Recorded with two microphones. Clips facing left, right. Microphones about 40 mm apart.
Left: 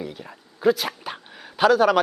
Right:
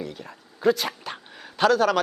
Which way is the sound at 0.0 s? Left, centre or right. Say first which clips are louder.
Left 1 dB; centre.